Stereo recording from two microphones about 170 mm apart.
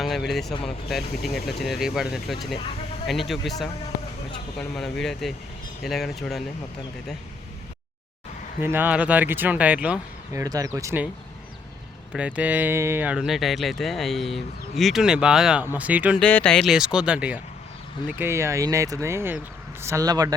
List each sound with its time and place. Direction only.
0.0 s speech: centre (ahead or behind)
8.6 s speech: 10° right (ahead or behind)
10.3 s speech: 20° right (ahead or behind)
12.1 s speech: 10° right (ahead or behind)
16.2 s speech: 5° left (ahead or behind); by 20.3 s 20° right (ahead or behind)